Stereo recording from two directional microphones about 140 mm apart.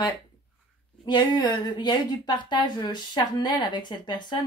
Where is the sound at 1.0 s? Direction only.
30° left (ahead or behind).